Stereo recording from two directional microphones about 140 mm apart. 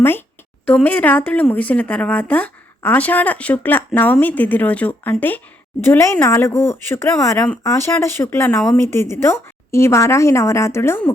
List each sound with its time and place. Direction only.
0.6 s speech: 10° left (ahead or behind)